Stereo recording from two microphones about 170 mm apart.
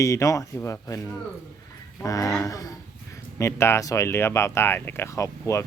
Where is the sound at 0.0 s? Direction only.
20° left (ahead or behind).